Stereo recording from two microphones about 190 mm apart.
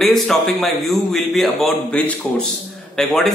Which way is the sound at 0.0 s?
Centre (ahead or behind).